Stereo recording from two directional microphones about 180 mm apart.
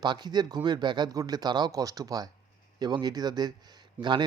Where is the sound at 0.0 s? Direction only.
25° right (ahead or behind).